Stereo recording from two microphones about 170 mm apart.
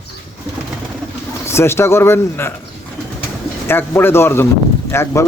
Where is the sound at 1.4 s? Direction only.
15° left (ahead or behind).